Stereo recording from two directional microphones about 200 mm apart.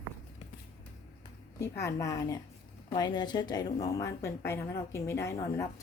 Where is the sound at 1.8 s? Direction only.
15° left (ahead or behind).